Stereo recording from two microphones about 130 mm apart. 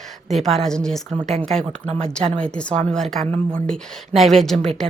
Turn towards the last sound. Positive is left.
turn(degrees=0)  # may be behind; listen again after turning